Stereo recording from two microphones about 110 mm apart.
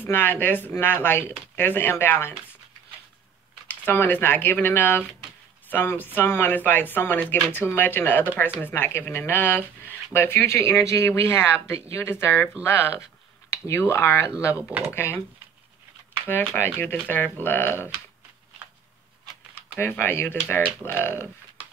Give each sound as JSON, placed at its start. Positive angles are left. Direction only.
{"t": 0.0, "sound": "speech", "side_deg": 20}
{"t": 3.6, "sound": "speech", "side_deg": 20}
{"t": 16.3, "sound": "speech", "side_deg": 20}
{"t": 19.8, "sound": "speech", "side_deg": 20}